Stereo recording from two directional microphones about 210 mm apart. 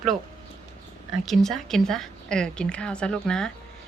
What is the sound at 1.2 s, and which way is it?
A woman's voice, centre (ahead or behind).